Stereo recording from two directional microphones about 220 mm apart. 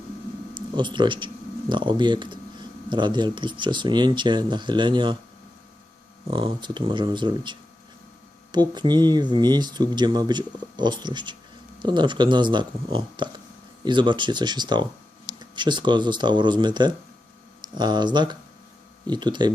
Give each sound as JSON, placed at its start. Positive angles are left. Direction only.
{"t": 0.5, "sound": "speech", "side_deg": -20}
{"t": 6.3, "sound": "speech", "side_deg": -20}
{"t": 8.5, "sound": "speech", "side_deg": -20}